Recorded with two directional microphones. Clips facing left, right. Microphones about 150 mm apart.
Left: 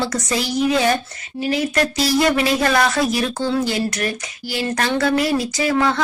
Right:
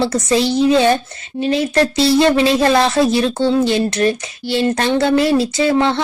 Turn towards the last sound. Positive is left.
turn(degrees=-25)  # may be behind; listen again after turning